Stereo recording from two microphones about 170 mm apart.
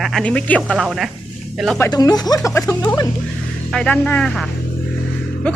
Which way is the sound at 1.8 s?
20° left (ahead or behind).